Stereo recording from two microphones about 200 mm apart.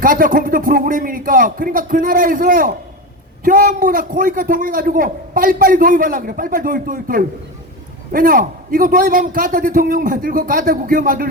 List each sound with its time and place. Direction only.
0.0 s a man's voice: 45° right (ahead or behind)